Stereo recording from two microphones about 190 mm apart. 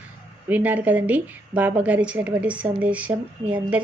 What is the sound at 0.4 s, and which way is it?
A woman's voice, 10° right (ahead or behind).